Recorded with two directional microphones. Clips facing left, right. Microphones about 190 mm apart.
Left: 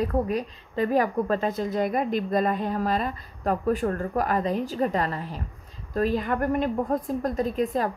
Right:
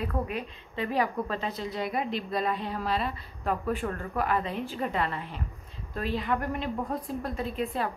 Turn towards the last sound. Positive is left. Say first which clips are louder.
# left 5 dB
turn(degrees=40)  # may be behind; listen again after turning